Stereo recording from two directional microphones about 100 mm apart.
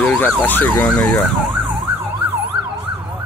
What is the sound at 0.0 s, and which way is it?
Emergency vehicle, 20° left (ahead or behind).